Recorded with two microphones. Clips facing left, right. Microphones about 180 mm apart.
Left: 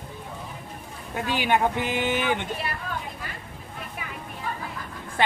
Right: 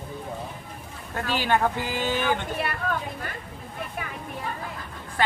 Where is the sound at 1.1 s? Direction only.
15° left (ahead or behind).